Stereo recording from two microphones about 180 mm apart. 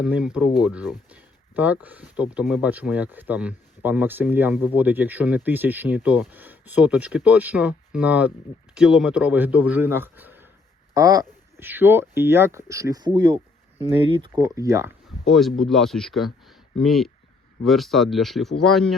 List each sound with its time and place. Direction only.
0.0 s speech: 5° right (ahead or behind)
15.3 s speech: centre (ahead or behind)